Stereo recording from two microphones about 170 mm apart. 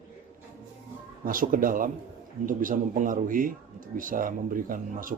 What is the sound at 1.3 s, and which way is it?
Speech, 55° right (ahead or behind).